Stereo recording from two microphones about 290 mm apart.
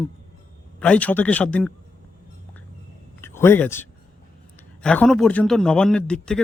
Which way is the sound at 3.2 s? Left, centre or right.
Centre.